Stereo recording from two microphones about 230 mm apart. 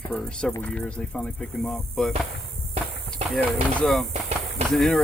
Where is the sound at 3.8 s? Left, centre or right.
Centre.